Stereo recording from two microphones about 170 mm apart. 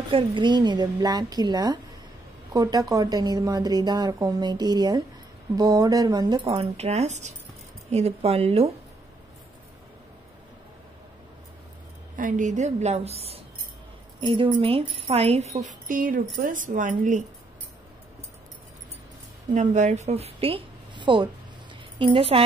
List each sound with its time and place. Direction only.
0.1 s speech: 30° right (ahead or behind)
12.2 s a woman's voice: 50° right (ahead or behind)
15.6 s a woman's voice: 50° right (ahead or behind)
19.5 s a woman's voice: 45° right (ahead or behind)